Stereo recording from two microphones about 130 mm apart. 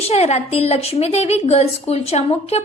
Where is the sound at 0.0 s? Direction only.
55° left (ahead or behind).